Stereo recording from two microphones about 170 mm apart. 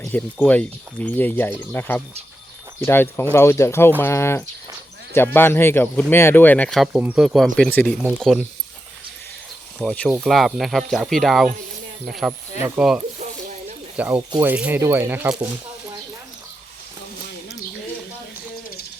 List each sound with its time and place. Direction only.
0.0 s speech: 10° left (ahead or behind)
9.7 s speech: 5° left (ahead or behind)
14.2 s speech: 20° right (ahead or behind)
14.5 s speech: 10° right (ahead or behind)